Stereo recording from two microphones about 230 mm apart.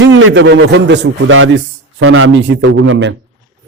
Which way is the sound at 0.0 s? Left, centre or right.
Right.